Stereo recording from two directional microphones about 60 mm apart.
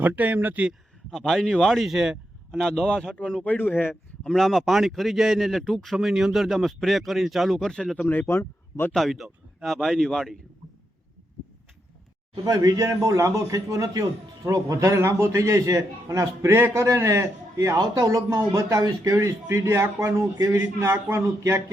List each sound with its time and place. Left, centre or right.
0.0 s a man's voice: right
1.1 s speech: centre
2.6 s a man's voice: centre
3.4 s speech: left
4.4 s speech: centre
8.0 s speech: left
8.9 s speech: centre
12.5 s speech: right
12.9 s a man's voice: right
18.8 s speech: right
19.2 s a sound: right